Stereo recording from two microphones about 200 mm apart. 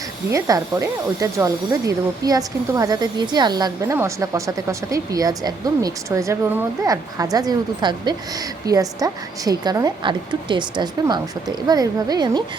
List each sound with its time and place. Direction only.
0.3 s speech: 15° right (ahead or behind)